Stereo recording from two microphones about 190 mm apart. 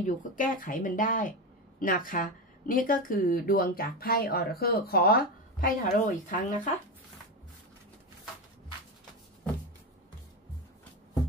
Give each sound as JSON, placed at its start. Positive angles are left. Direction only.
{"t": 0.0, "sound": "a woman's voice", "side_deg": 45}